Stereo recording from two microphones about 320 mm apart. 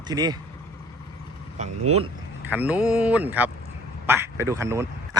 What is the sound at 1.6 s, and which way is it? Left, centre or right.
Speech, right.